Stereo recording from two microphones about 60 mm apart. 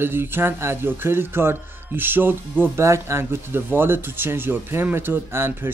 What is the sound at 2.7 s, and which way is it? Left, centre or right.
Speech, right.